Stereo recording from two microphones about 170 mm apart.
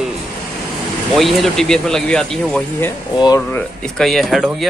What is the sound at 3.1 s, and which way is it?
Speech, 25° left (ahead or behind).